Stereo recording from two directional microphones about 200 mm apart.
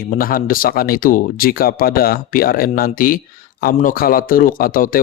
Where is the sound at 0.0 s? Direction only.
45° left (ahead or behind).